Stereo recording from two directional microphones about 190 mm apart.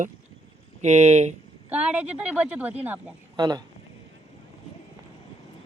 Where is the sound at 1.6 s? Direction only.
5° right (ahead or behind).